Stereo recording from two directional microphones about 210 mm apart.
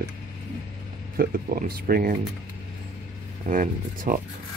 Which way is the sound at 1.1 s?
45° right (ahead or behind).